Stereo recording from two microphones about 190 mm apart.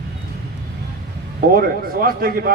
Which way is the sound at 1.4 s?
50° right (ahead or behind).